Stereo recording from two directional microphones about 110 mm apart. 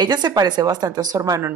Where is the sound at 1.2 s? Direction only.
25° right (ahead or behind).